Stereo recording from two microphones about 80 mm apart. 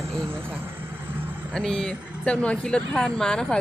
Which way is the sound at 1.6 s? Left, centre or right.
Centre.